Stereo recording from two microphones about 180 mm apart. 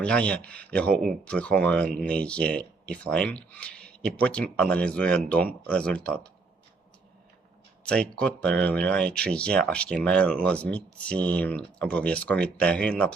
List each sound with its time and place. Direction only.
0.0 s speech: 5° left (ahead or behind)
7.9 s speech: 5° left (ahead or behind)